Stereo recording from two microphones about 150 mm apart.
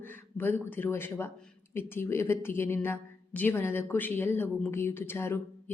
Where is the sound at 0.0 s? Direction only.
15° left (ahead or behind).